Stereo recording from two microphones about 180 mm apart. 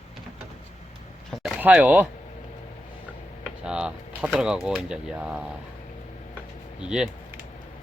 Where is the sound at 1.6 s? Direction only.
10° right (ahead or behind).